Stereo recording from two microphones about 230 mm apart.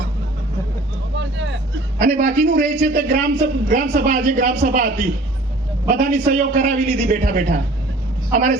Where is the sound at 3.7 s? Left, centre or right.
Right.